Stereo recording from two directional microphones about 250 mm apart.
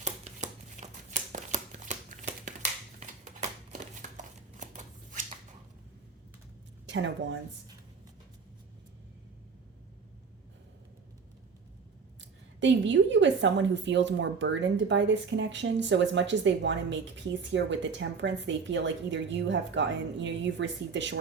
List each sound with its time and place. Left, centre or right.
0.0 s a sound: right
4.2 s shuffling cards: right
6.8 s a woman's voice: right
12.2 s speech: right